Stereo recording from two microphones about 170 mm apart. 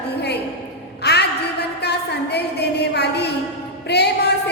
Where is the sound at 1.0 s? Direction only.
75° left (ahead or behind).